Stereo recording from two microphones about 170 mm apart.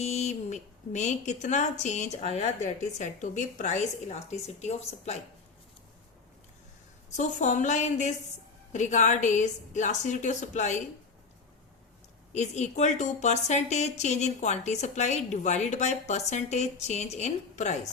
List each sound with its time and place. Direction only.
0.0 s a woman's voice: 40° left (ahead or behind)
7.2 s a woman's voice: 45° left (ahead or behind)
12.3 s a woman's voice: 40° left (ahead or behind)